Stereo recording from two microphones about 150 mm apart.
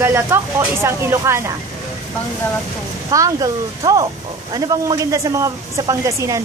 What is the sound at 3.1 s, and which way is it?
Speech, 25° right (ahead or behind).